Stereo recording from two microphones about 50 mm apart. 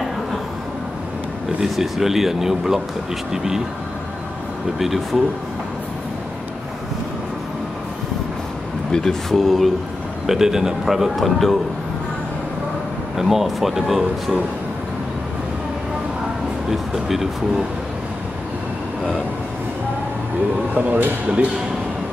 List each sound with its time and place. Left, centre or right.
1.6 s a man's voice: centre
4.7 s speech: centre
8.9 s speech: centre
10.2 s a man's voice: centre
13.1 s speech: centre
16.7 s speech: centre
20.7 s speech: right